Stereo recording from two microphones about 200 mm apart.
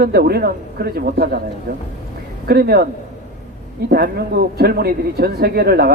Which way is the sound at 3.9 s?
50° right (ahead or behind).